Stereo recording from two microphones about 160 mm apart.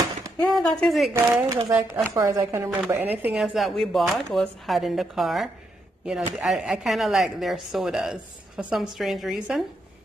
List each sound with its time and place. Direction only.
0.5 s speech: 5° left (ahead or behind)
1.1 s speech: 15° right (ahead or behind)